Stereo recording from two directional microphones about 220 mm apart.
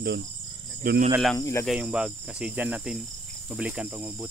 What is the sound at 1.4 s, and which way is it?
Speech, 15° left (ahead or behind).